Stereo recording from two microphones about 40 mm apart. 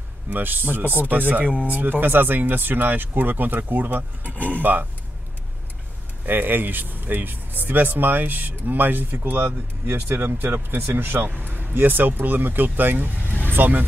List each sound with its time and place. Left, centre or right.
0.3 s speech: right
4.2 s speech: left
4.6 s speech: right
6.2 s speech: right
11.3 s speech: right
13.3 s vehicle: left
13.6 s speech: right